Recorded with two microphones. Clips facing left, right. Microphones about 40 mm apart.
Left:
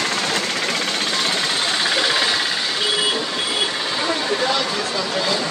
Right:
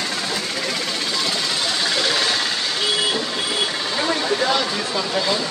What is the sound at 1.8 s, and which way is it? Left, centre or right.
Vehicle, left.